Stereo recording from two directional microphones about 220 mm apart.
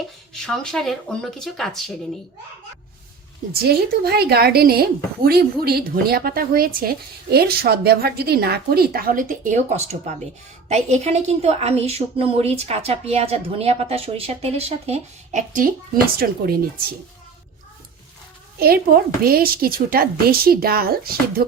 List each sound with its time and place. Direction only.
0.4 s speech: centre (ahead or behind)
3.5 s a woman's voice: 45° right (ahead or behind)
18.6 s a woman's voice: 45° right (ahead or behind)